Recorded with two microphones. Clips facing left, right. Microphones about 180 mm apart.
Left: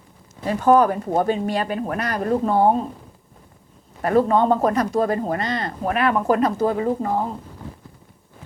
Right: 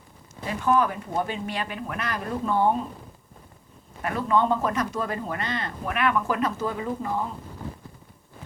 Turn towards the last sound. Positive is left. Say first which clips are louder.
# left 6 dB
turn(degrees=40)  # may be behind; listen again after turning